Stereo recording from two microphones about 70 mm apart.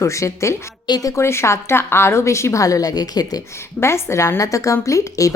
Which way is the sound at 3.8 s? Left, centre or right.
Left.